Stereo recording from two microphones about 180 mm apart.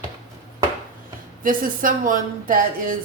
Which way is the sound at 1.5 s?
50° right (ahead or behind).